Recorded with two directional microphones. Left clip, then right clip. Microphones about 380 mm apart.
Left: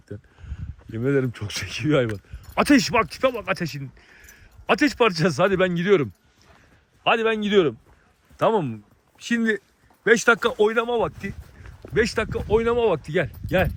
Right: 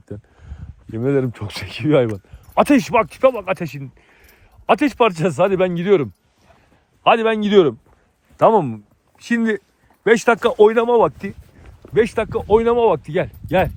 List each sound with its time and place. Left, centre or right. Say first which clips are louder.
0.9 s speech: right 4 dB; centre
9.1 s speech: right 3 dB; centre
10.6 s speech: right 8 dB; centre